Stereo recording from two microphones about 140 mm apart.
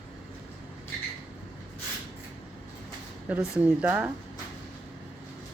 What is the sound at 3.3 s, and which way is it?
Speech, 10° right (ahead or behind).